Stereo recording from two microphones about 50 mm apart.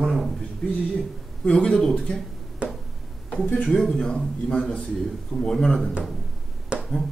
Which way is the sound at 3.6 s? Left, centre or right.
Centre.